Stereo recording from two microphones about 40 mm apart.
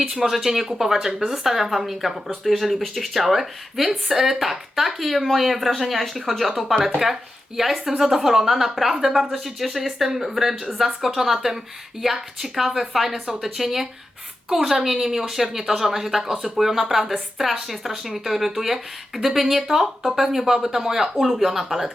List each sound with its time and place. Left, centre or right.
0.1 s a woman's voice: centre